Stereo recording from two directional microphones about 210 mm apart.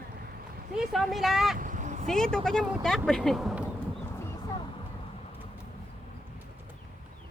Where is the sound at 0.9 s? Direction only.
Centre (ahead or behind).